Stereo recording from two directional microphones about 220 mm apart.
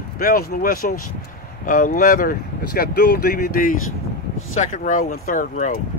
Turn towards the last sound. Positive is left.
turn(degrees=35)  # may be behind; listen again after turning